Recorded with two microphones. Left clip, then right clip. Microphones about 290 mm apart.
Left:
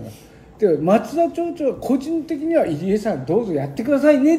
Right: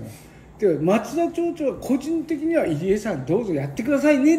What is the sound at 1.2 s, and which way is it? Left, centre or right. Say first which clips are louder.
Speech: left 3 dB; left.